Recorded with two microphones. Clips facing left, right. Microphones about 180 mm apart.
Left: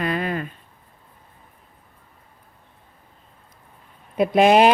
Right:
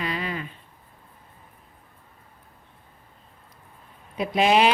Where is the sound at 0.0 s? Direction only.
50° left (ahead or behind).